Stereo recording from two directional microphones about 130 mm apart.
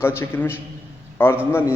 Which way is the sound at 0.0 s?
20° left (ahead or behind).